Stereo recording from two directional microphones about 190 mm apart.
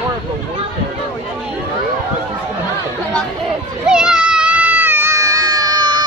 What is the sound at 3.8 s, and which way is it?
Baby cry, 5° right (ahead or behind).